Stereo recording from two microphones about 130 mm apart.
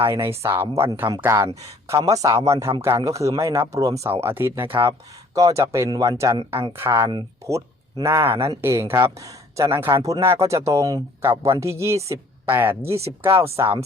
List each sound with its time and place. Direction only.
0.0 s a woman's voice: 20° right (ahead or behind)